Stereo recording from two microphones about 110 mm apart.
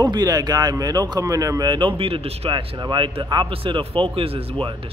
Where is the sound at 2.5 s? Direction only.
45° right (ahead or behind).